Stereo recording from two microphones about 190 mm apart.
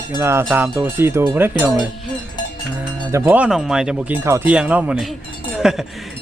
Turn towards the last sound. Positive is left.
turn(degrees=0)  # may be behind; listen again after turning